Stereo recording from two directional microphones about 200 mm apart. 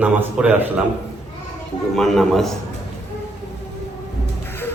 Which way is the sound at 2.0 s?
Centre (ahead or behind).